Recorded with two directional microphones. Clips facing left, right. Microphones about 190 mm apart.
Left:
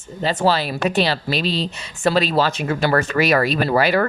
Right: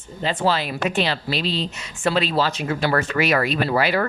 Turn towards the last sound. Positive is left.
turn(degrees=45)  # may be behind; listen again after turning